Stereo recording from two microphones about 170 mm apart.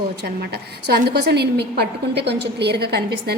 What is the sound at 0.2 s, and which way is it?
A woman's voice, 75° right (ahead or behind).